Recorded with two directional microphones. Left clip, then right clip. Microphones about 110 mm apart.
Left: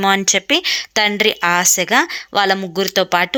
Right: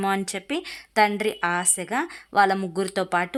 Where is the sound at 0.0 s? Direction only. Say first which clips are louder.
Left 11 dB; 25° left (ahead or behind).